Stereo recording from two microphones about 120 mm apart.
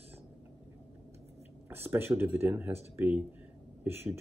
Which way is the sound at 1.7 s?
20° right (ahead or behind).